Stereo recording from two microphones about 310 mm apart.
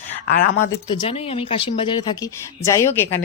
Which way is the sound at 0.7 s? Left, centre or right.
Centre.